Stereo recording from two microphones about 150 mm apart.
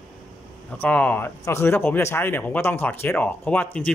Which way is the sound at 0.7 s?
10° left (ahead or behind).